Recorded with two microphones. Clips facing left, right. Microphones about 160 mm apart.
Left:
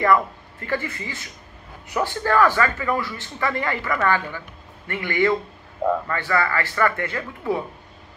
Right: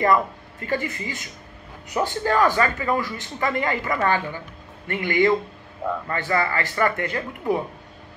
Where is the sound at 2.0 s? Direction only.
20° right (ahead or behind).